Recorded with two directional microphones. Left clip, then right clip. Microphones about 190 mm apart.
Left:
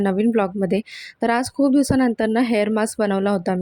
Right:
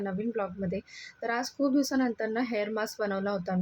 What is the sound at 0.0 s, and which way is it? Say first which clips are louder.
Speech: left 13 dB; 45° left (ahead or behind).